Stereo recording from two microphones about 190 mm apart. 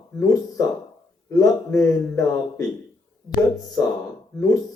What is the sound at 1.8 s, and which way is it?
Speech, 15° left (ahead or behind).